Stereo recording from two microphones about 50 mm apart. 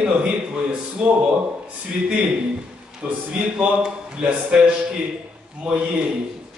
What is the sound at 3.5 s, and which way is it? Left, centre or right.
A man's voice, right.